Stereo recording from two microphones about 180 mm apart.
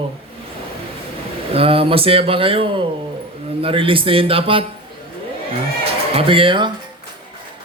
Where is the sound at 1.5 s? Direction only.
30° right (ahead or behind).